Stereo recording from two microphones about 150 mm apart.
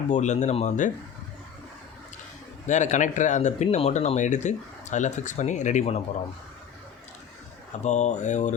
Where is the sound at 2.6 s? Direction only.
55° left (ahead or behind).